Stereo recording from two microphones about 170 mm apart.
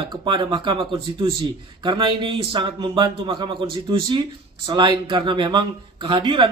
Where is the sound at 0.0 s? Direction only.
30° right (ahead or behind).